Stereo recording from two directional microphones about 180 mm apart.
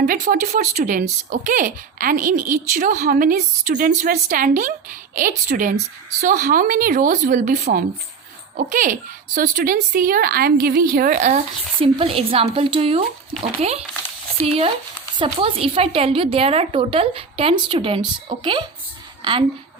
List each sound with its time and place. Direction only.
0.0 s a woman's voice: 50° right (ahead or behind); by 19.5 s 30° right (ahead or behind)